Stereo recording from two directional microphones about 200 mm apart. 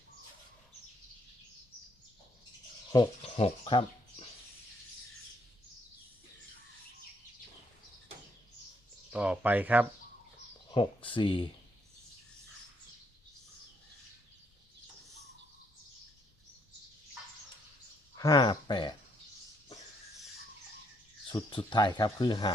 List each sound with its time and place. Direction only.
2.9 s speech: 20° left (ahead or behind)
3.3 s bird: 30° left (ahead or behind)
9.1 s speech: 5° right (ahead or behind)
10.7 s speech: 25° left (ahead or behind)
18.2 s speech: 20° left (ahead or behind)
21.2 s speech: 25° left (ahead or behind)